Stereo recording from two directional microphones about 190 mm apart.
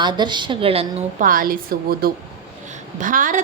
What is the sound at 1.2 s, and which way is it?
A woman's voice, 50° right (ahead or behind).